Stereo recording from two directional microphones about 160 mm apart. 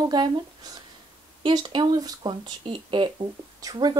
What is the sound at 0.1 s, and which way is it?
Speech, 25° right (ahead or behind).